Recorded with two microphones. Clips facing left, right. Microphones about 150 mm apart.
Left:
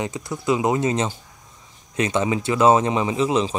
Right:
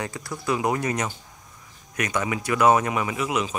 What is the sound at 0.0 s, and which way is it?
Speech, 20° left (ahead or behind).